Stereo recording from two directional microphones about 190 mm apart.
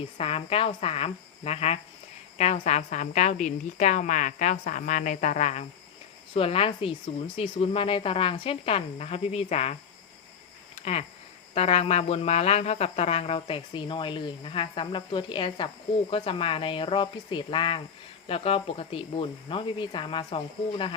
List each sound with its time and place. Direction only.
0.2 s a woman's voice: 30° left (ahead or behind)
11.5 s speech: 30° left (ahead or behind)